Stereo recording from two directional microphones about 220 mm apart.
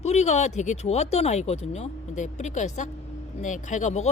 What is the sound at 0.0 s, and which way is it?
Speech, 30° left (ahead or behind).